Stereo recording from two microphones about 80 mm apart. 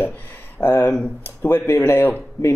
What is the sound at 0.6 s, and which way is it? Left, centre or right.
Speech, left.